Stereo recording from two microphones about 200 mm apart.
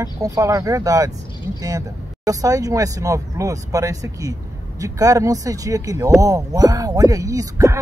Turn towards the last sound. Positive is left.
turn(degrees=-15)  # may be behind; listen again after turning